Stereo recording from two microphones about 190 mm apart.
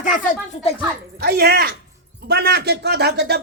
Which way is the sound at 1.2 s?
55° right (ahead or behind).